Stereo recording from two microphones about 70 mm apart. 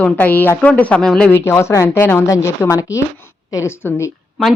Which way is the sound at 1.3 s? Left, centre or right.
Left.